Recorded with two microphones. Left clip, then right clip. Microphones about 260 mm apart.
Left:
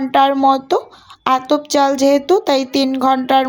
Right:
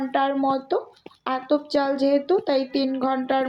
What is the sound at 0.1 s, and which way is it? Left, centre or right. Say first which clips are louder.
Speech: left 11 dB; left.